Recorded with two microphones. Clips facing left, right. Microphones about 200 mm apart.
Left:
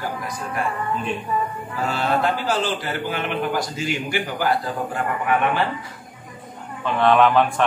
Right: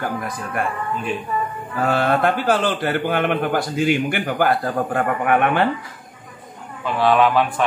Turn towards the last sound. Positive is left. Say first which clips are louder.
# even
turn(degrees=-5)  # may be behind; listen again after turning